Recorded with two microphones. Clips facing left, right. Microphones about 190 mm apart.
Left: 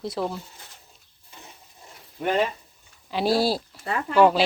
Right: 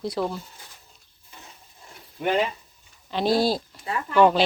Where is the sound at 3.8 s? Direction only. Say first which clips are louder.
Left 2 dB; 70° left (ahead or behind).